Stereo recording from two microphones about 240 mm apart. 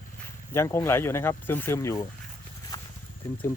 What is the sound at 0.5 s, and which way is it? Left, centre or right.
Speech, centre.